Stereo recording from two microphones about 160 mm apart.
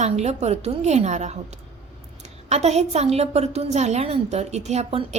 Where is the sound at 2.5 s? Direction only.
45° right (ahead or behind).